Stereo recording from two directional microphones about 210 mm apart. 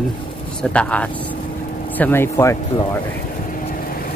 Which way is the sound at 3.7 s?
45° left (ahead or behind).